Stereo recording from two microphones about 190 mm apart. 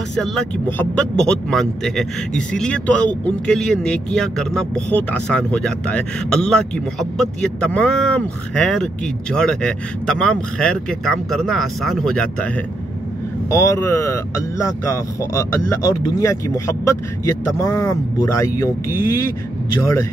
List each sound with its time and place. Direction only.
0.1 s speech: 5° left (ahead or behind)
13.5 s speech: 15° left (ahead or behind)